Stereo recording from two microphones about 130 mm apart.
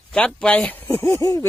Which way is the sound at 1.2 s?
25° left (ahead or behind).